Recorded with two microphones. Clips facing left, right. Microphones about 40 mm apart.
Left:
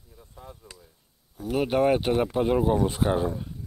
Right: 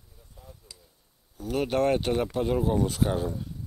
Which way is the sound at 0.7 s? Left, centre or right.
Left.